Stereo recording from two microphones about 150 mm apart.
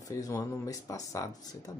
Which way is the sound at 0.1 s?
20° left (ahead or behind).